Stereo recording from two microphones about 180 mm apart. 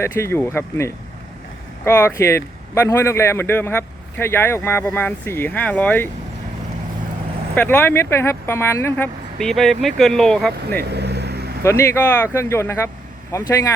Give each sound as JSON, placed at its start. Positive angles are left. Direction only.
{"t": 0.0, "sound": "speech", "side_deg": 15}
{"t": 7.5, "sound": "speech", "side_deg": 10}
{"t": 9.4, "sound": "speech", "side_deg": 0}
{"t": 10.8, "sound": "vehicle", "side_deg": -65}
{"t": 11.6, "sound": "speech", "side_deg": 15}